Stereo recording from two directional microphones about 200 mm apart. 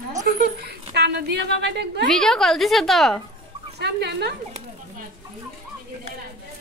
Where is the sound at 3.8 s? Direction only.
55° right (ahead or behind).